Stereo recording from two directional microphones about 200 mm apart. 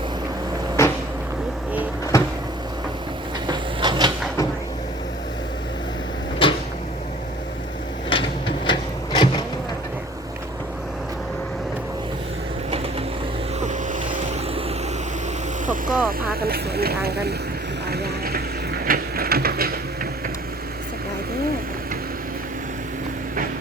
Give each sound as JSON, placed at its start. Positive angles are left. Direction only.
{"t": 0.8, "sound": "vehicle", "side_deg": 15}
{"t": 2.1, "sound": "cupboard open or close", "side_deg": 15}
{"t": 3.4, "sound": "train", "side_deg": -25}
{"t": 6.4, "sound": "cupboard open or close", "side_deg": 25}
{"t": 8.1, "sound": "a sound", "side_deg": 25}
{"t": 13.6, "sound": "boat", "side_deg": -40}
{"t": 15.6, "sound": "vehicle", "side_deg": -40}
{"t": 16.0, "sound": "speech", "side_deg": -50}
{"t": 17.8, "sound": "a sound", "side_deg": -50}